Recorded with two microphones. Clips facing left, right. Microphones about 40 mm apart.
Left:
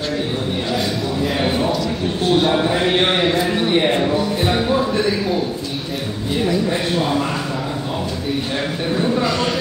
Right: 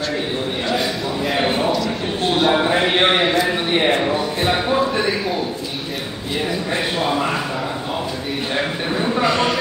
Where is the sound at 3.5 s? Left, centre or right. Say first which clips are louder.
Left 1 dB; centre.